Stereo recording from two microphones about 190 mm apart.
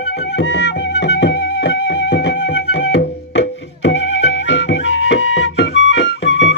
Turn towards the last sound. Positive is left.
turn(degrees=65)  # may be behind; listen again after turning